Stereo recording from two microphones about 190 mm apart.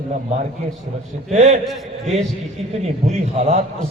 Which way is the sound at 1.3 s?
35° right (ahead or behind).